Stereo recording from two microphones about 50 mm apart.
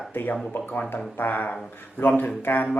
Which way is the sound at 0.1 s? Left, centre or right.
Left.